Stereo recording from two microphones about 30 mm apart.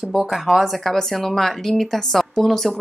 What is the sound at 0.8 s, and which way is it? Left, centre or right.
Speech, centre.